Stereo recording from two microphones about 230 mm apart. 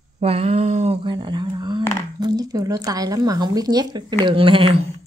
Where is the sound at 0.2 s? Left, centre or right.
Right.